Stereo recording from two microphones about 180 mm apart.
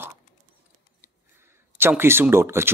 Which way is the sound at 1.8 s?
15° right (ahead or behind).